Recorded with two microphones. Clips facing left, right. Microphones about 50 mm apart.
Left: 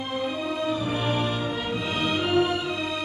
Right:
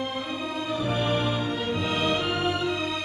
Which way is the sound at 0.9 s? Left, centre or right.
Centre.